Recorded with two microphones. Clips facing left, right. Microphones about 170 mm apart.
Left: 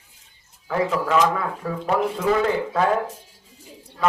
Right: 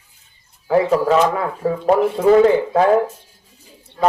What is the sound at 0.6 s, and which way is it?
Speech, 35° right (ahead or behind).